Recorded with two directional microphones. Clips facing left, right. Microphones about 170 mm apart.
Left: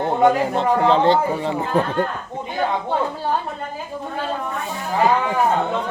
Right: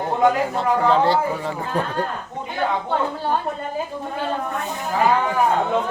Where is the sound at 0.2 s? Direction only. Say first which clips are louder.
Left 2 dB; 25° left (ahead or behind).